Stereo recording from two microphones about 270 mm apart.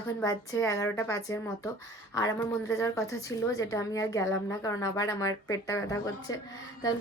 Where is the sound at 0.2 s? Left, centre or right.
Centre.